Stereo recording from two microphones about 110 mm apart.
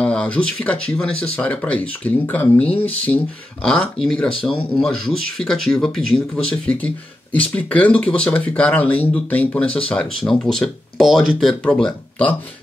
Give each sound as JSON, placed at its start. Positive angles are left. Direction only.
{"t": 0.0, "sound": "speech", "side_deg": 10}
{"t": 11.6, "sound": "speech", "side_deg": 10}